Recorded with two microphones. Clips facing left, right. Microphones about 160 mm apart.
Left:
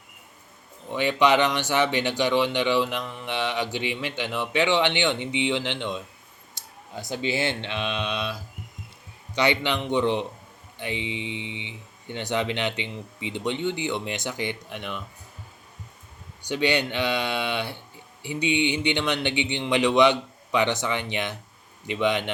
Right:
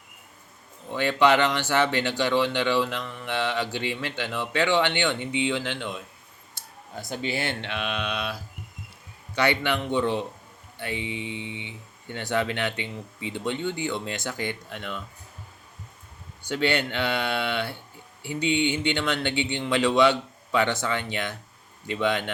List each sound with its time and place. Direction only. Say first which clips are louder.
0.9 s speech: even; 15° left (ahead or behind)
7.3 s speech: left 3 dB; 25° left (ahead or behind)
16.4 s speech: left 1 dB; 15° left (ahead or behind)